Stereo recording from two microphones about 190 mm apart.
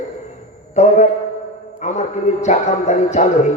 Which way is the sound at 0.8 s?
35° left (ahead or behind).